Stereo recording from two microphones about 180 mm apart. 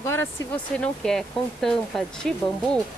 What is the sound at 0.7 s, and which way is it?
Speech, centre (ahead or behind).